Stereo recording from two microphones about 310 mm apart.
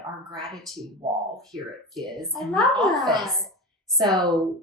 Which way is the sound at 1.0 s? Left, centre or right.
Centre.